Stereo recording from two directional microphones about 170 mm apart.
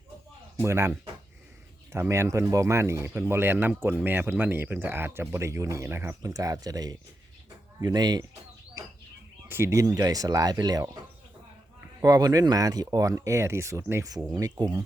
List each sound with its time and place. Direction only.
0.6 s speech: 15° right (ahead or behind)
9.5 s speech: 15° right (ahead or behind)
11.9 s speech: 20° right (ahead or behind)